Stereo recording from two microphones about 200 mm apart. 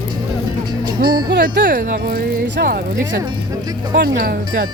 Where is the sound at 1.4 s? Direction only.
45° right (ahead or behind).